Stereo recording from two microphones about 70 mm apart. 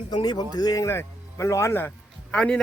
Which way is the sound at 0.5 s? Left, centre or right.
Left.